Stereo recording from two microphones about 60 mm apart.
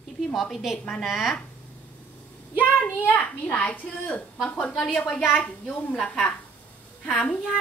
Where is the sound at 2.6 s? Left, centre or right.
Left.